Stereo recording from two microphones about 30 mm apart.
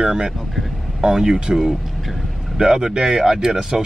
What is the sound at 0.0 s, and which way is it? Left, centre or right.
Speech, right.